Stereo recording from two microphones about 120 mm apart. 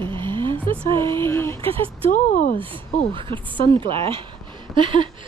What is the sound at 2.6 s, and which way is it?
A woman's voice, 45° right (ahead or behind).